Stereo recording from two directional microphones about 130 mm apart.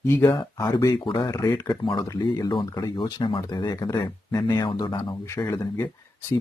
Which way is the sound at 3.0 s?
35° left (ahead or behind).